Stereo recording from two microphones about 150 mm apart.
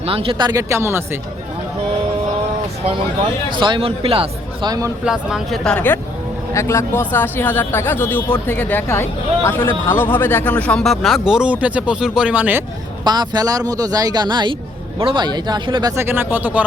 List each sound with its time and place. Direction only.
0.0 s speech: 40° right (ahead or behind)
0.7 s speech: 15° right (ahead or behind)
3.6 s speech: 35° right (ahead or behind)
5.0 s speech: 5° right (ahead or behind)
13.1 s speech: 25° right (ahead or behind); by 16.6 s 10° right (ahead or behind)